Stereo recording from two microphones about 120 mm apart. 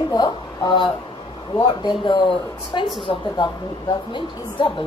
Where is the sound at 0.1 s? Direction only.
35° left (ahead or behind).